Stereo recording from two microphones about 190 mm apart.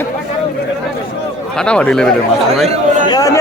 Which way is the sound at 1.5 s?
5° left (ahead or behind).